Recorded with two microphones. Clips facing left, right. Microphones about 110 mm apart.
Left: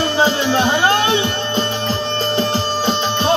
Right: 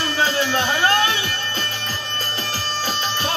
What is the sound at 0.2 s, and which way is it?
Music, 20° left (ahead or behind).